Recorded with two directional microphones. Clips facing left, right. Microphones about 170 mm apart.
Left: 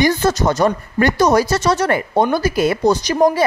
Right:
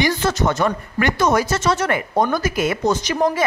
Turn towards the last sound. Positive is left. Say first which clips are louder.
# left 4 dB
turn(degrees=35)  # may be behind; listen again after turning